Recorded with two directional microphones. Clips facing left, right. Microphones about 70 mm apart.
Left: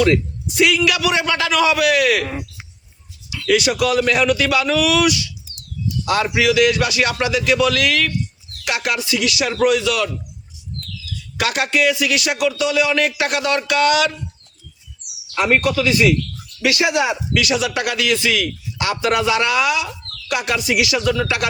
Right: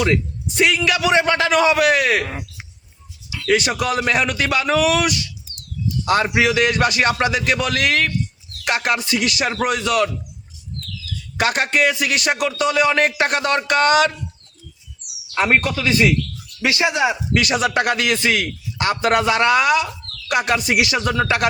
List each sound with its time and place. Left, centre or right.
0.4 s a man's voice: right
3.4 s a man's voice: right
11.3 s a man's voice: right
15.4 s a man's voice: right
17.3 s a man's voice: right